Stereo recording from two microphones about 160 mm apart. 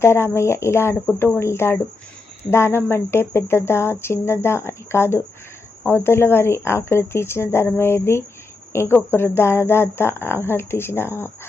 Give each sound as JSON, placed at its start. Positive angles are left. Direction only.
{"t": 0.0, "sound": "speech", "side_deg": 15}
{"t": 1.0, "sound": "speech", "side_deg": 5}
{"t": 1.4, "sound": "speech", "side_deg": 15}